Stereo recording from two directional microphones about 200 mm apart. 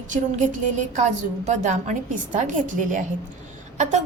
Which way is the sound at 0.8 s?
35° right (ahead or behind).